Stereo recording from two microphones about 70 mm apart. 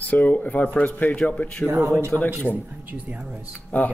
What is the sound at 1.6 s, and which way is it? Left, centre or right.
Speech, right.